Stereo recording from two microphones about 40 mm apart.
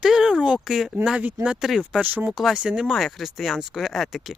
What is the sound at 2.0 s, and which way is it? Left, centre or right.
Speech, right.